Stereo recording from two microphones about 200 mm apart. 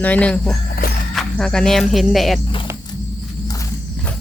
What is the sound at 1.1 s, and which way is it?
Speech, 5° left (ahead or behind).